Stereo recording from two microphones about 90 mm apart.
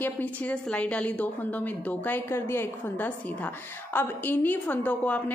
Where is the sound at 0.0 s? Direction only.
15° left (ahead or behind).